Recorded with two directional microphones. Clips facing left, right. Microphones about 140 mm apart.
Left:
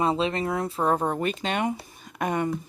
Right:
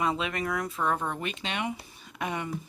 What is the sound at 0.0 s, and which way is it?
Speech, 30° left (ahead or behind).